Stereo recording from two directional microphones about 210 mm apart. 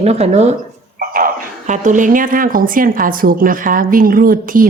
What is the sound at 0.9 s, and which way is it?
Speech, 40° right (ahead or behind).